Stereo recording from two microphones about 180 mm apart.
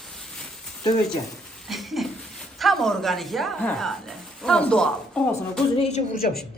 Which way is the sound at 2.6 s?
Centre (ahead or behind).